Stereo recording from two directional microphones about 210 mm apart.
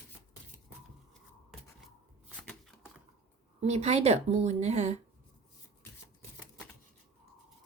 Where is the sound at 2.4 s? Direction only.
Centre (ahead or behind).